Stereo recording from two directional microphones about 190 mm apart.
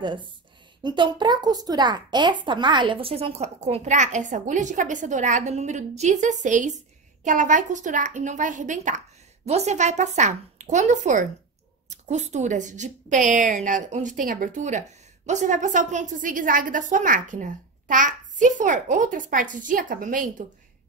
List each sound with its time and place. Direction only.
0.0 s a woman's voice: 25° right (ahead or behind); by 20.4 s 45° right (ahead or behind)